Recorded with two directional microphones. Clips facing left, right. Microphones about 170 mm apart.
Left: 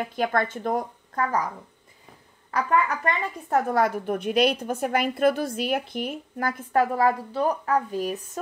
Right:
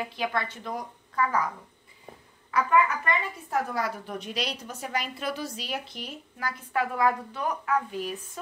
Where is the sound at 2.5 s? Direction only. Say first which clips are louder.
Even; 40° left (ahead or behind).